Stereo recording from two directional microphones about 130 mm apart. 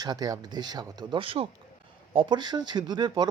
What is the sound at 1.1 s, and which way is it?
Speech, 45° right (ahead or behind).